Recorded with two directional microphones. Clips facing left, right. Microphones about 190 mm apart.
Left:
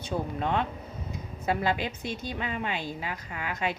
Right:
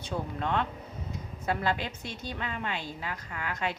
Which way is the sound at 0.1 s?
15° left (ahead or behind).